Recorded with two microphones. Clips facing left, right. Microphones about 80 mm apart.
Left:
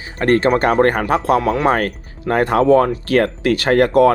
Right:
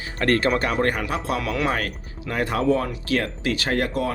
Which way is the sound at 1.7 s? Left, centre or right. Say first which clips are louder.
Left 9 dB; left.